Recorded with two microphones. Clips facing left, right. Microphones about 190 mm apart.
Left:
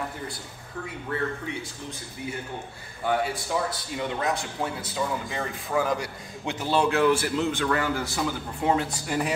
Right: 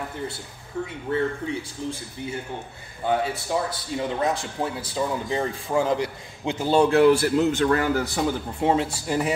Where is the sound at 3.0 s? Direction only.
20° right (ahead or behind); by 7.9 s 40° right (ahead or behind).